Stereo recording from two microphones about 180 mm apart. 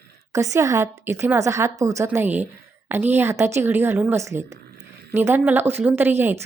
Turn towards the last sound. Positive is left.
turn(degrees=-15)  # may be behind; listen again after turning